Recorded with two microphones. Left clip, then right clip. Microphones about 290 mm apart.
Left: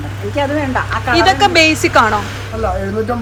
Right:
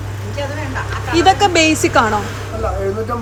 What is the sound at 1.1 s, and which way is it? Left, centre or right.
A woman's voice, centre.